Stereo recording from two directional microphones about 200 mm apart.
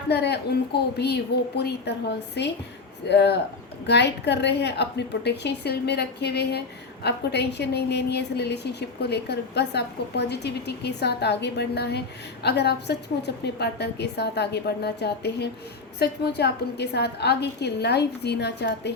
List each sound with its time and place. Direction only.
0.1 s a woman's voice: 55° left (ahead or behind)